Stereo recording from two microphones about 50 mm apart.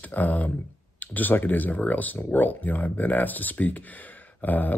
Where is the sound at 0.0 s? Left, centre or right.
Left.